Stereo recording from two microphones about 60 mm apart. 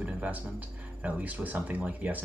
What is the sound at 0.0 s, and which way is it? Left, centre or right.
Music, right.